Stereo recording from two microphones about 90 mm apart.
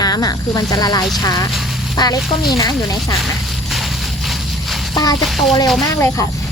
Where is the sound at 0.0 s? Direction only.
45° left (ahead or behind).